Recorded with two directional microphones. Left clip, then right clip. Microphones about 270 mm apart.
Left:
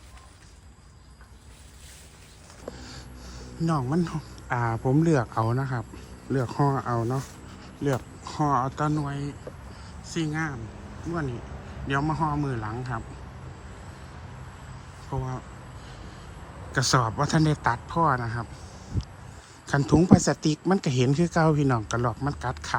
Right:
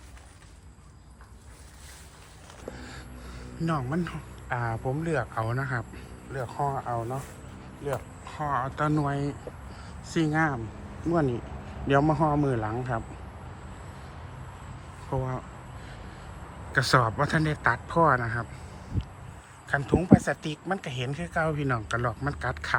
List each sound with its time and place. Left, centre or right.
2.7 s a sound: centre
5.0 s speech: left
6.3 s speech: left
7.9 s speech: left; by 9.3 s centre
9.7 s a sound: centre
11.9 s speech: centre
15.1 s speech: centre
16.7 s speech: centre
19.6 s speech: left